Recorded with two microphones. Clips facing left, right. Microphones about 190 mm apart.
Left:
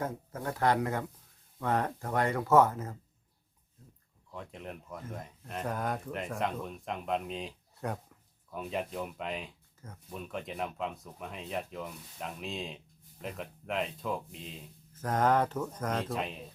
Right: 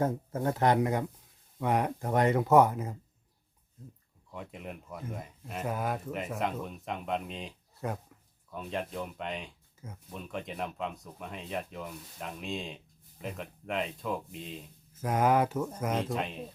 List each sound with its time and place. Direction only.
0.0 s speech: 25° right (ahead or behind)
4.3 s speech: 5° right (ahead or behind)